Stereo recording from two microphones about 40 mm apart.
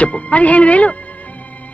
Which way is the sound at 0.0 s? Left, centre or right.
Left.